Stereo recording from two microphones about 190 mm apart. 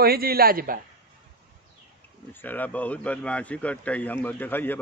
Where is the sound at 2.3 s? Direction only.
10° left (ahead or behind).